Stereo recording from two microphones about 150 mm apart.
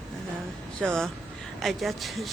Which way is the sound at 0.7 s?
5° left (ahead or behind).